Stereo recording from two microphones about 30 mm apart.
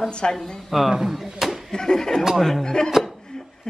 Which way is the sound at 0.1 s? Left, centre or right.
Left.